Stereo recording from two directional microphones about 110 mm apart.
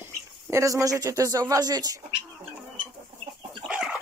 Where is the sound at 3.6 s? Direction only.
5° right (ahead or behind).